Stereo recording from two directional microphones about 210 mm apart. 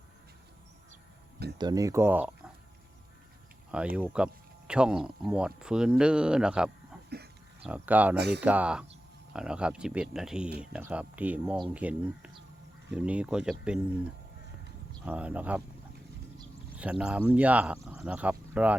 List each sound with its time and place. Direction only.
1.5 s speech: 20° right (ahead or behind)
3.7 s speech: 5° right (ahead or behind)
7.1 s a sound: 50° right (ahead or behind)
7.7 s speech: 5° right (ahead or behind)
8.1 s speech: 50° right (ahead or behind)
8.4 s speech: 5° right (ahead or behind)
15.0 s speech: 5° right (ahead or behind)
16.7 s speech: 5° right (ahead or behind)